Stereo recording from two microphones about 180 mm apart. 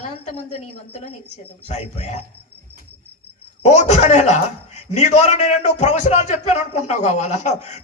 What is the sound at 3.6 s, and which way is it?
A man's voice, 40° left (ahead or behind).